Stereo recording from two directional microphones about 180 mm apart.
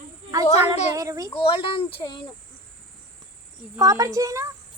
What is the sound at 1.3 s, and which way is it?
Speech, 30° left (ahead or behind).